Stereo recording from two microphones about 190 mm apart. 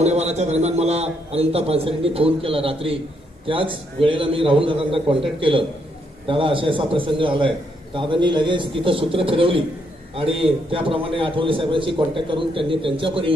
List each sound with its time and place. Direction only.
0.0 s a man's voice: 35° right (ahead or behind)